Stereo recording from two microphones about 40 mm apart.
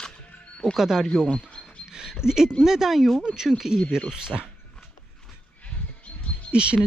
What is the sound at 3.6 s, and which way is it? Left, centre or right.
Speech, centre.